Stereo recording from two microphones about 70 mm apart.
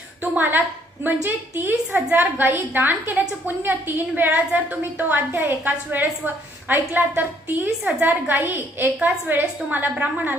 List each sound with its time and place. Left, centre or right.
0.2 s a woman's voice: right